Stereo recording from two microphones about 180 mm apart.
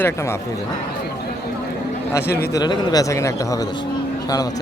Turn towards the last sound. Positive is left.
turn(degrees=20)  # may be behind; listen again after turning